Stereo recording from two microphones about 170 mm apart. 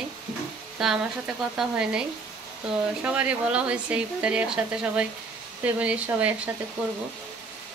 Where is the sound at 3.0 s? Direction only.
5° right (ahead or behind).